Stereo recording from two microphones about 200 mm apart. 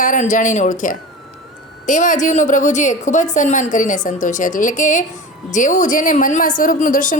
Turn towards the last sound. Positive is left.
turn(degrees=40)  # may be behind; listen again after turning